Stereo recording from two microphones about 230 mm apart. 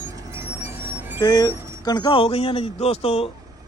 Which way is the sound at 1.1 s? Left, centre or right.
Centre.